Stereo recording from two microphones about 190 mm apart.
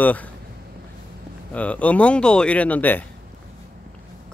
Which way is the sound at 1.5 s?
5° left (ahead or behind).